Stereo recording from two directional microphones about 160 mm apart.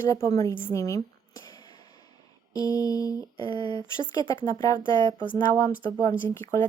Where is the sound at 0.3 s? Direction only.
20° left (ahead or behind).